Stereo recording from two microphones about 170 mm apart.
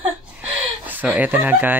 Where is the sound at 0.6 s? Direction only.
10° right (ahead or behind).